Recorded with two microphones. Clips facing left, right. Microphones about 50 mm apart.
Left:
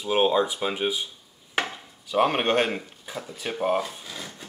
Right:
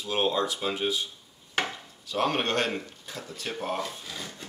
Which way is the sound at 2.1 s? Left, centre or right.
Centre.